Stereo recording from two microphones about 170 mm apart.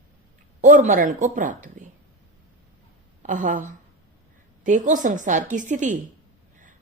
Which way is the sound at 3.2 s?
45° right (ahead or behind).